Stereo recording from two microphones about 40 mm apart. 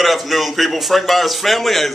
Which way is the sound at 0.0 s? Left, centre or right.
Centre.